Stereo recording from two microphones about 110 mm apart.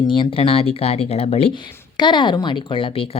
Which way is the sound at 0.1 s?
50° left (ahead or behind).